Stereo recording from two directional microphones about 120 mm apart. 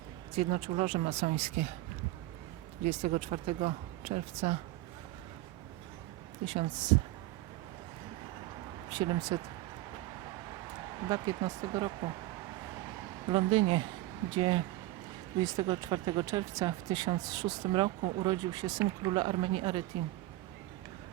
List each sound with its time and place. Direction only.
0.3 s speech: 60° right (ahead or behind)
2.8 s speech: 75° right (ahead or behind); by 4.5 s 60° right (ahead or behind)
6.4 s speech: 50° right (ahead or behind)
8.9 s speech: 35° right (ahead or behind)
11.1 s speech: 35° right (ahead or behind)
13.2 s speech: 40° right (ahead or behind)
15.4 s speech: 35° right (ahead or behind)
17.7 s speech: 45° right (ahead or behind)